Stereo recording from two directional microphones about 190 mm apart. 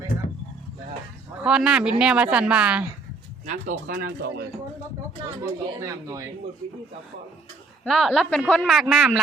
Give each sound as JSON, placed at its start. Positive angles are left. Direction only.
{"t": 1.5, "sound": "a woman's voice", "side_deg": -5}
{"t": 3.4, "sound": "speech", "side_deg": -45}
{"t": 5.2, "sound": "speech", "side_deg": -15}
{"t": 7.9, "sound": "a woman's voice", "side_deg": 0}